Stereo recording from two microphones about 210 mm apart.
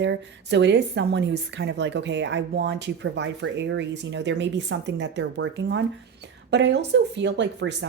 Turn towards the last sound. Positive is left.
turn(degrees=-55)  # may be behind; listen again after turning